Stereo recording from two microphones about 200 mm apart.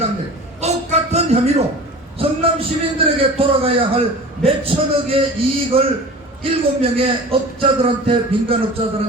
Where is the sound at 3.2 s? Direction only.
30° right (ahead or behind).